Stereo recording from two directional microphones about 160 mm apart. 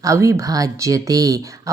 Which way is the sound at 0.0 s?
20° right (ahead or behind).